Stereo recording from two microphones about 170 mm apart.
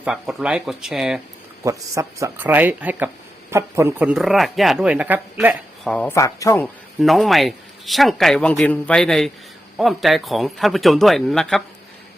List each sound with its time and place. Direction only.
0.0 s speech: 5° right (ahead or behind)
1.6 s speech: 15° right (ahead or behind)
5.8 s speech: 5° left (ahead or behind)
6.1 s speech: 20° left (ahead or behind)
7.0 s speech: centre (ahead or behind)